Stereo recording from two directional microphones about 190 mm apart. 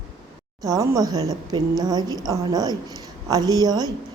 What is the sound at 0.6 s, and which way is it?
A woman's voice, 20° right (ahead or behind).